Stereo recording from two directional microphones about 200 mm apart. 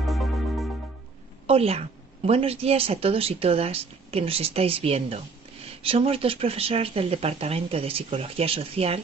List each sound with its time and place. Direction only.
0.0 s music: centre (ahead or behind)
1.5 s a woman's voice: 30° right (ahead or behind)